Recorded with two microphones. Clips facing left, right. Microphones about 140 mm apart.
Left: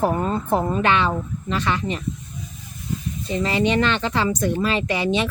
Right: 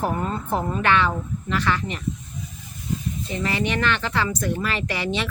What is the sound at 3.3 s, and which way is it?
A woman's voice, 20° left (ahead or behind).